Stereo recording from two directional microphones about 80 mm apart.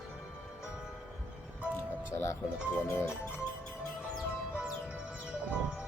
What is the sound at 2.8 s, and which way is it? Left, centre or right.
Speech, left.